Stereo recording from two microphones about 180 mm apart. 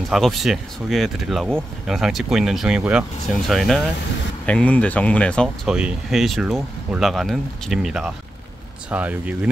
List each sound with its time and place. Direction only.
0.1 s speech: centre (ahead or behind)